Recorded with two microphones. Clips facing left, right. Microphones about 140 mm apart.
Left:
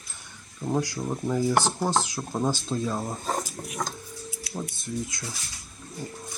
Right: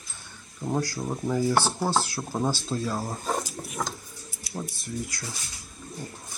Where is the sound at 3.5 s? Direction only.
Centre (ahead or behind).